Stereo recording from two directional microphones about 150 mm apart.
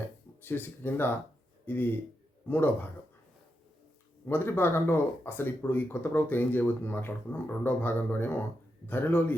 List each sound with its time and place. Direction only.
0.4 s speech: 15° left (ahead or behind)
4.3 s speech: 15° left (ahead or behind)